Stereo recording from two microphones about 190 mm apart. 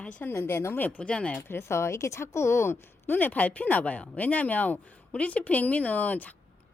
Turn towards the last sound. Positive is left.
turn(degrees=10)  # may be behind; listen again after turning